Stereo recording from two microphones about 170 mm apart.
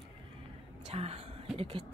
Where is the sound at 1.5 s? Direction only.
30° right (ahead or behind).